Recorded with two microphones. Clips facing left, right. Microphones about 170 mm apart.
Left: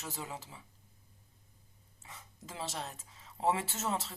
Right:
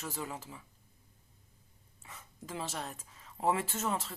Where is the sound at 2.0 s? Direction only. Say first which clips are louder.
Right 2 dB; 30° left (ahead or behind).